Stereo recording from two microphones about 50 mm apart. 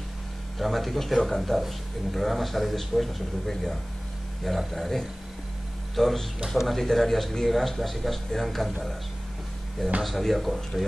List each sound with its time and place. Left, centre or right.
0.6 s speech: centre
10.0 s speech: centre